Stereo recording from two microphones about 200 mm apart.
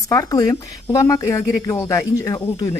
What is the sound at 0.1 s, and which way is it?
Speech, 15° left (ahead or behind).